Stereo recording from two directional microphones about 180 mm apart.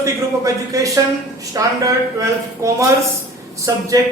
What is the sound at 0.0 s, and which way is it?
Speech, 15° right (ahead or behind).